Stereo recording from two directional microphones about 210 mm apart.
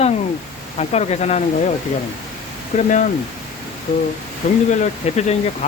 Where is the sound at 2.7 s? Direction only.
35° left (ahead or behind).